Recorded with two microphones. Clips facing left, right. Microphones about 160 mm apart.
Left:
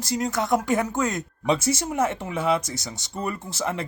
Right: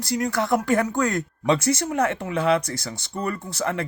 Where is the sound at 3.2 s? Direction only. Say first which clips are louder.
Right 2 dB; 20° left (ahead or behind).